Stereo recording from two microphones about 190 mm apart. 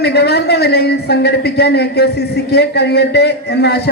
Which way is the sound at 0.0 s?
60° left (ahead or behind).